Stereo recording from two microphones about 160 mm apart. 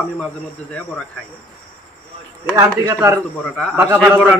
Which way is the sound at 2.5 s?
20° right (ahead or behind).